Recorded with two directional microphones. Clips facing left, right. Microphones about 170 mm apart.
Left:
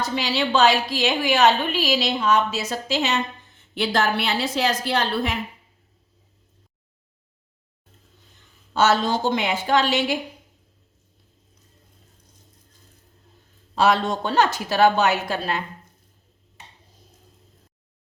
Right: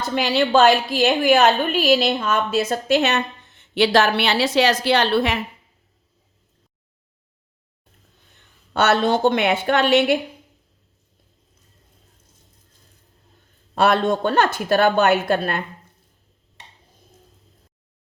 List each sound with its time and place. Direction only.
0.0 s a woman's voice: 55° right (ahead or behind); by 5.4 s 75° right (ahead or behind)
8.7 s a woman's voice: 65° right (ahead or behind)
13.7 s a woman's voice: 55° right (ahead or behind)